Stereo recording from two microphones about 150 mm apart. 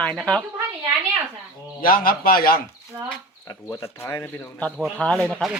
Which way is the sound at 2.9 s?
20° right (ahead or behind).